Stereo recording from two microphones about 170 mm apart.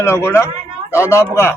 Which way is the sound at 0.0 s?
15° left (ahead or behind).